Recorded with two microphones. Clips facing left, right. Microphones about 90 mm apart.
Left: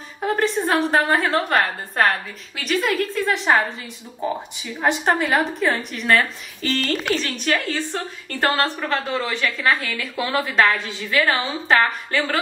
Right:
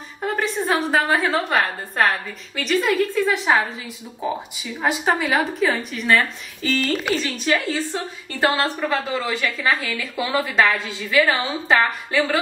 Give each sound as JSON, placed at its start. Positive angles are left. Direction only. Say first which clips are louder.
{"t": 0.2, "sound": "a woman's voice", "louder": "left 3 dB", "side_deg": 0}
{"t": 4.7, "sound": "a woman's voice", "louder": "left 1 dB", "side_deg": 0}